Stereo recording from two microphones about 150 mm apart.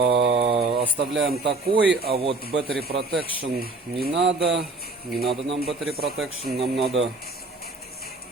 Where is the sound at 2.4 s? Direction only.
90° right.